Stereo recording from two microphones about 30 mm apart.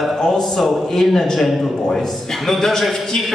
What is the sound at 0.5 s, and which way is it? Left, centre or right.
A man's voice, centre.